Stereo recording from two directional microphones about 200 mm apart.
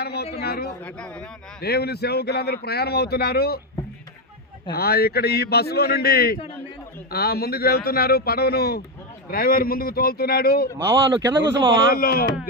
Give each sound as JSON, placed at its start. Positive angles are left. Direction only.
{"t": 0.0, "sound": "a man's voice", "side_deg": 55}
{"t": 0.9, "sound": "speech", "side_deg": 5}
{"t": 1.6, "sound": "speech", "side_deg": 55}
{"t": 4.7, "sound": "speech", "side_deg": 50}
{"t": 10.8, "sound": "speech", "side_deg": -10}
{"t": 11.9, "sound": "speech", "side_deg": 50}